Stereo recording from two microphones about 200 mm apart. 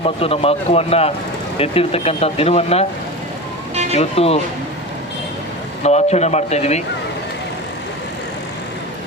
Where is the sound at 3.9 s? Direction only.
30° left (ahead or behind).